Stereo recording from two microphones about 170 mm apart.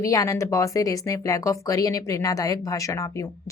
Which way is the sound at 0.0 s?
20° left (ahead or behind).